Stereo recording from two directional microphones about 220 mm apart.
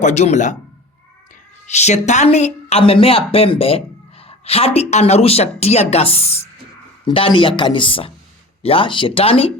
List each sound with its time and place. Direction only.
0.0 s speech: 30° left (ahead or behind)
1.6 s a woman's voice: 30° left (ahead or behind)